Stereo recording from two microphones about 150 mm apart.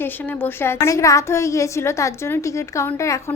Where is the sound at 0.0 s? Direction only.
15° left (ahead or behind).